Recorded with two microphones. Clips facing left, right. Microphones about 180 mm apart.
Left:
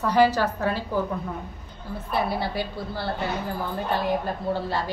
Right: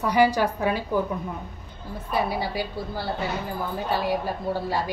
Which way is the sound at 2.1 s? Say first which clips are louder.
Even; 10° right (ahead or behind).